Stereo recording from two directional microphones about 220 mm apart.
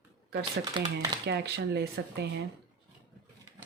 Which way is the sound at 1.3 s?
50° right (ahead or behind).